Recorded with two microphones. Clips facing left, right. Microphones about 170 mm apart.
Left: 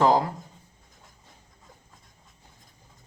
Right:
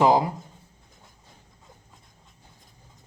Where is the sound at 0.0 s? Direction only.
15° right (ahead or behind).